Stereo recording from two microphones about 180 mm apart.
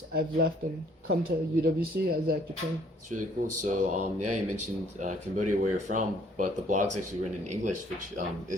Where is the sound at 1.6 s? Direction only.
55° right (ahead or behind).